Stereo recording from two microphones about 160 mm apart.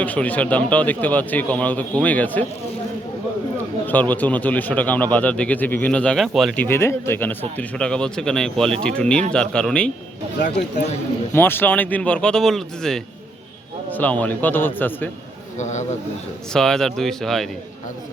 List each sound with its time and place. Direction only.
0.0 s a man's voice: 10° left (ahead or behind)
3.8 s a man's voice: 10° left (ahead or behind)
6.6 s a man's voice: 15° left (ahead or behind)
11.3 s a man's voice: 15° left (ahead or behind)
15.5 s a man's voice: 50° left (ahead or behind)
16.5 s speech: 5° left (ahead or behind)